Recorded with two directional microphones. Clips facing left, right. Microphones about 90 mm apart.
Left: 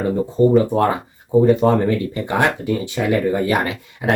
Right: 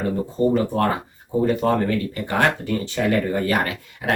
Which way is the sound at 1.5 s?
20° left (ahead or behind).